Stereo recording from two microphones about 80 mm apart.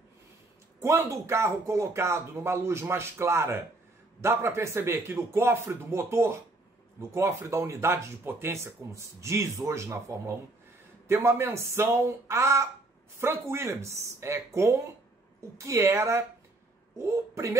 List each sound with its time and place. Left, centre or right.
0.7 s a woman's voice: right